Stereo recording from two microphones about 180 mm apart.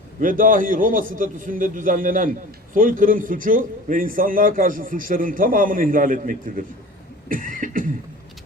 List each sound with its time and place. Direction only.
0.2 s a man's voice: 50° right (ahead or behind)
7.3 s cough: 50° right (ahead or behind)